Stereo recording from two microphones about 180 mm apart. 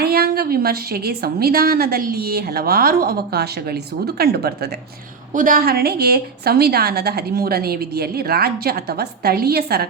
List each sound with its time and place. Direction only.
0.0 s a woman's voice: 60° right (ahead or behind)
5.3 s a woman's voice: 50° right (ahead or behind)